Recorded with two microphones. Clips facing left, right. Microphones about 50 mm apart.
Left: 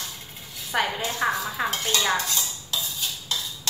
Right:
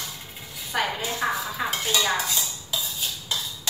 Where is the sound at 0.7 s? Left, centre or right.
Centre.